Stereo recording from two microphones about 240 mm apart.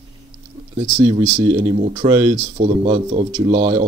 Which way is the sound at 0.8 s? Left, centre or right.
Right.